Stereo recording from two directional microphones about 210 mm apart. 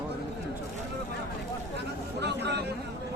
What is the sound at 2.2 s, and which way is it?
Chatter, 50° right (ahead or behind).